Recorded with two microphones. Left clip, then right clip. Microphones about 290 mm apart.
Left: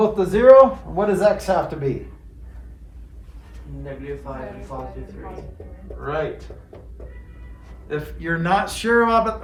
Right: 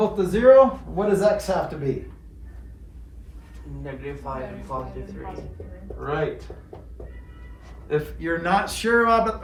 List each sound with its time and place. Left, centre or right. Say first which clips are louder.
0.0 s speech: left 3 dB; centre
4.7 s speech: right 3 dB; right
6.0 s speech: left 2 dB; centre
7.9 s a man's voice: right 1 dB; centre